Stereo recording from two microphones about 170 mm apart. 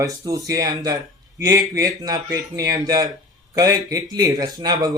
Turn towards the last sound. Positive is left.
turn(degrees=-25)  # may be behind; listen again after turning